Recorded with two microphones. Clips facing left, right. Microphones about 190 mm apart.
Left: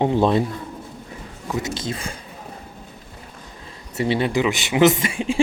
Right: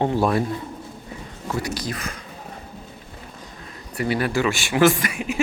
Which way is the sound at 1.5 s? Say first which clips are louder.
Left 1 dB; 20° left (ahead or behind).